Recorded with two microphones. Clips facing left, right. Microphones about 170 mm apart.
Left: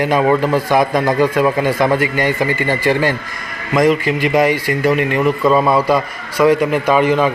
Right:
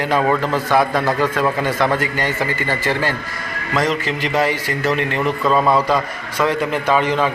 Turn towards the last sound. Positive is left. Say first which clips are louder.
# left 4 dB
turn(degrees=10)  # may be behind; listen again after turning